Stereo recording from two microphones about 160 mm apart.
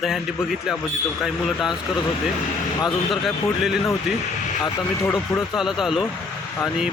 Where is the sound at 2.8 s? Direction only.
Centre (ahead or behind).